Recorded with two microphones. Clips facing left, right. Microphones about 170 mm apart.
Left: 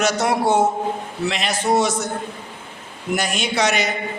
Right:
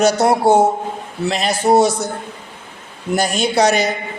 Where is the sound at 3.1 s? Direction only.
35° right (ahead or behind).